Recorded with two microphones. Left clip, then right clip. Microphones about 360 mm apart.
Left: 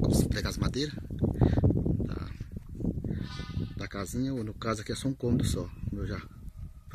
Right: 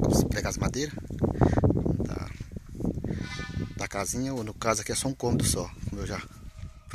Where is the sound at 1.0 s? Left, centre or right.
Right.